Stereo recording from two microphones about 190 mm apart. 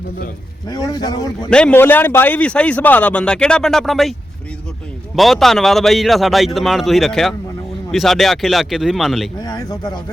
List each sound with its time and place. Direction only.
0.7 s speech: 20° left (ahead or behind)
1.5 s speech: 5° left (ahead or behind)
5.1 s speech: centre (ahead or behind)
9.4 s speech: 20° left (ahead or behind)